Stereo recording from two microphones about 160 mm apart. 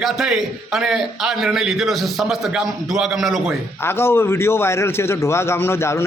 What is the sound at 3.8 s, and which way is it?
A man's voice, 15° left (ahead or behind).